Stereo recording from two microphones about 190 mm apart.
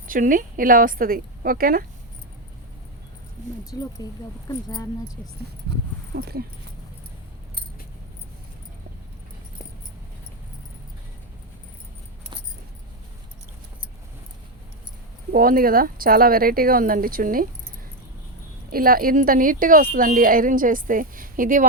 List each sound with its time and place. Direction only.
0.1 s speech: 45° right (ahead or behind)
3.7 s speech: 20° left (ahead or behind)
6.1 s speech: 55° right (ahead or behind)
15.3 s speech: 50° right (ahead or behind)
18.7 s speech: 50° right (ahead or behind)